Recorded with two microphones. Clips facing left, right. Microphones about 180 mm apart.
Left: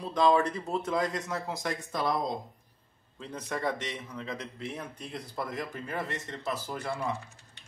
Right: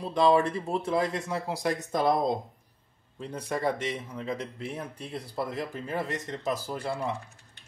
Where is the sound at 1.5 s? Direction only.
35° right (ahead or behind).